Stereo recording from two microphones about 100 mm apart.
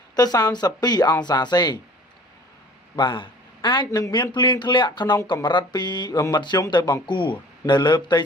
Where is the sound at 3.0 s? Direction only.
55° left (ahead or behind).